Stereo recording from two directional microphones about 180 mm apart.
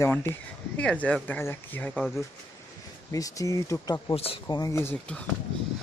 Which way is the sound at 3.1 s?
20° left (ahead or behind).